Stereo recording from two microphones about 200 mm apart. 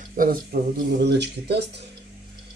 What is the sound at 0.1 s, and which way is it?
Speech, 45° right (ahead or behind).